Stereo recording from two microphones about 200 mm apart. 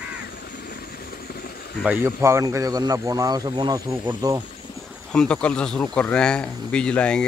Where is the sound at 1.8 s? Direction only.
10° right (ahead or behind).